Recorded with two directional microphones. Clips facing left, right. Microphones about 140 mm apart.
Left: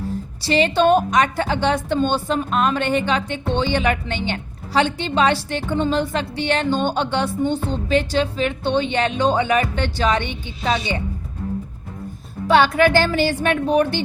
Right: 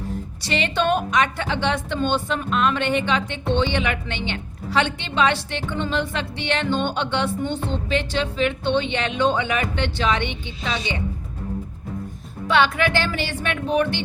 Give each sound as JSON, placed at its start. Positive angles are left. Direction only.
{"t": 0.4, "sound": "a woman's voice", "side_deg": 35}
{"t": 12.5, "sound": "a woman's voice", "side_deg": 40}